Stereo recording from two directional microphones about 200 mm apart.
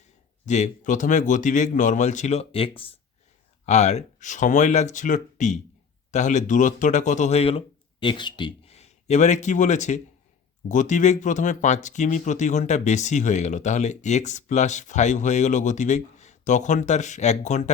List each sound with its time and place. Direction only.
0.4 s speech: 35° left (ahead or behind)